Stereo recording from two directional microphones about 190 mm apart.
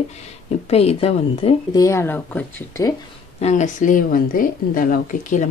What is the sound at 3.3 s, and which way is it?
Speech, 35° left (ahead or behind).